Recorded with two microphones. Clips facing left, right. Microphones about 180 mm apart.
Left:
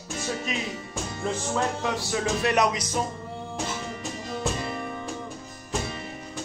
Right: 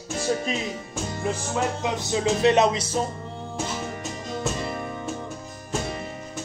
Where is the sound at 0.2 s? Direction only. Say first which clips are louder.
Right 6 dB; 35° right (ahead or behind).